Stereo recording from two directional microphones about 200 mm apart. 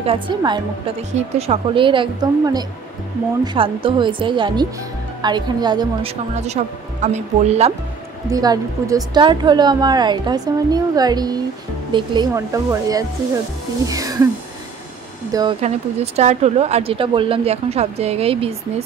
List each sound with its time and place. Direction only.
0.0 s a woman's voice: 25° right (ahead or behind)
6.3 s speech: 35° right (ahead or behind)
8.3 s a woman's voice: 15° right (ahead or behind)
15.6 s speech: 35° right (ahead or behind)